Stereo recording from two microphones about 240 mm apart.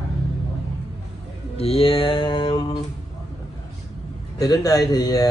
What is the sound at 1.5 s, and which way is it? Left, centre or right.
Mantra, left.